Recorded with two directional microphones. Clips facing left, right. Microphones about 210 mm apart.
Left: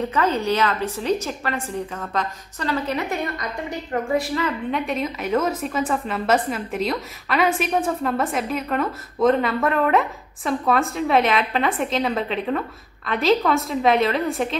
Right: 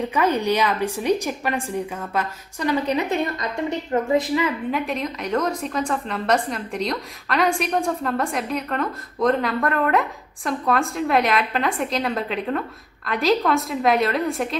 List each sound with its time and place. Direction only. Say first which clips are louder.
0.1 s a woman's voice: right 3 dB; 15° right (ahead or behind)